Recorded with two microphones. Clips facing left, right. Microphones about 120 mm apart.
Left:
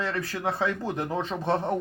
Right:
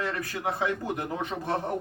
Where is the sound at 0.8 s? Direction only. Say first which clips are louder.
Left 2 dB; 25° left (ahead or behind).